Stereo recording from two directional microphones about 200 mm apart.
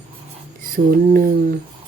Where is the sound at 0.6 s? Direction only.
45° right (ahead or behind).